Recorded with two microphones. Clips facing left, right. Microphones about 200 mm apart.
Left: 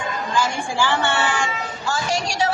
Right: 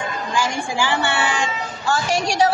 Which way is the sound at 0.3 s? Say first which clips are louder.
Even; 15° right (ahead or behind).